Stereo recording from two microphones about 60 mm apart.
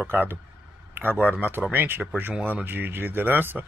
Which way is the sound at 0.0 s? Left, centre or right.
Right.